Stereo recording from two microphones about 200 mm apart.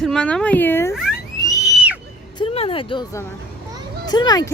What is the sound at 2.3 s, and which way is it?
Vehicle, 30° left (ahead or behind).